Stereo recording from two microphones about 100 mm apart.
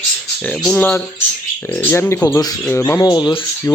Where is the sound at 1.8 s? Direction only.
25° left (ahead or behind).